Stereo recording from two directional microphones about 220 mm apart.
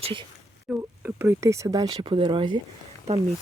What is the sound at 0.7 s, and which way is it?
Speech, 10° right (ahead or behind).